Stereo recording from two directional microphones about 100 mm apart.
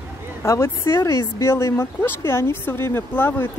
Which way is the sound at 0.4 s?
25° left (ahead or behind).